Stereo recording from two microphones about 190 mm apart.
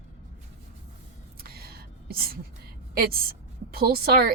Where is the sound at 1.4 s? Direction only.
55° right (ahead or behind).